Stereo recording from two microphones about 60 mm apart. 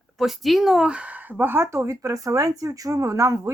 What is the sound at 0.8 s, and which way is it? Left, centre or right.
Speech, right.